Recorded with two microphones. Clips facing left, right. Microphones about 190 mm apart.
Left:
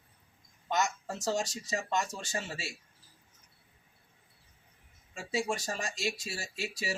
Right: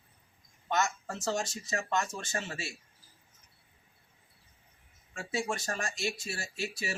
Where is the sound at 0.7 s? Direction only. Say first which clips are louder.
Even; 15° left (ahead or behind).